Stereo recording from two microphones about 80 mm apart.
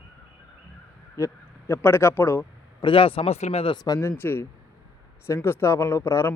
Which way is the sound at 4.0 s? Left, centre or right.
Left.